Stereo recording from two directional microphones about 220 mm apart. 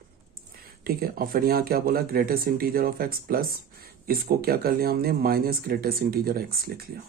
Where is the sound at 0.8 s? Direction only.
40° right (ahead or behind).